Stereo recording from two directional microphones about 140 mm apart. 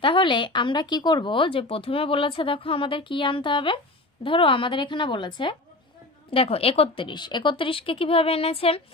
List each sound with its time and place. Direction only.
0.0 s speech: 35° left (ahead or behind)